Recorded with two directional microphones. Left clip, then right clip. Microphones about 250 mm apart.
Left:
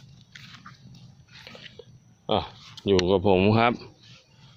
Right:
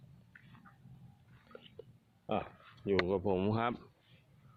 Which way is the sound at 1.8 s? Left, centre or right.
Right.